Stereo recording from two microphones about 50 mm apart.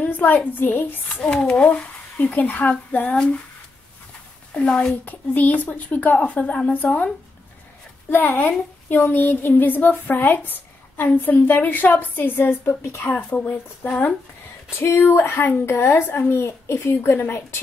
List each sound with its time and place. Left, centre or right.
0.1 s a woman's voice: left
1.2 s speech: centre
1.5 s speech: left
4.6 s speech: left
5.0 s speech: left
8.1 s a woman's voice: left
14.8 s speech: left
15.0 s a woman's voice: left